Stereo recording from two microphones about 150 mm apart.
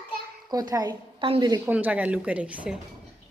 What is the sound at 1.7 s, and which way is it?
Speech, 10° right (ahead or behind).